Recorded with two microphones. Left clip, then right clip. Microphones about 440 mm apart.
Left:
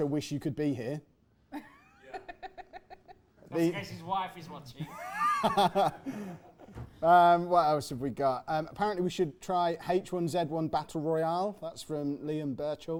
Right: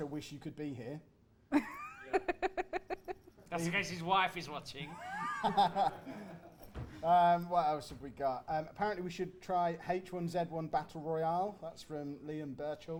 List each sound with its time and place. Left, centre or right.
0.0 s speech: left
1.5 s a sound: right
3.8 s a man's voice: right
4.9 s speech: left
7.0 s speech: left